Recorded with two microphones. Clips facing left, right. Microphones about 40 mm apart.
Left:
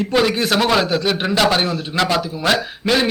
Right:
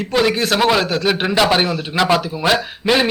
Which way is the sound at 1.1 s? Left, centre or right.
Centre.